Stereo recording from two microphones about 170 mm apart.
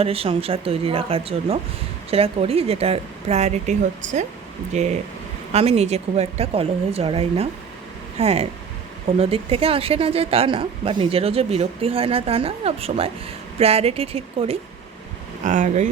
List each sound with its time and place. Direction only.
0.0 s a woman's voice: 35° right (ahead or behind)
15.4 s speech: 45° right (ahead or behind)